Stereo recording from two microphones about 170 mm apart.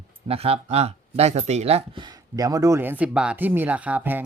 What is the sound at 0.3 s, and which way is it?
Speech, 35° right (ahead or behind).